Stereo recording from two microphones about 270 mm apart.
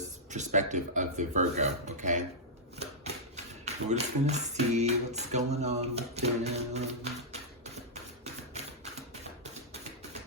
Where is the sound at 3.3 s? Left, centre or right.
Right.